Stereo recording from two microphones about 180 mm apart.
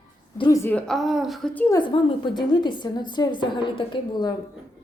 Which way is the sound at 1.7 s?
25° left (ahead or behind).